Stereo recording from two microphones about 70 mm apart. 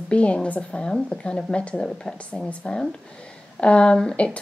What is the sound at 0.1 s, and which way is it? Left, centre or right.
Speech, centre.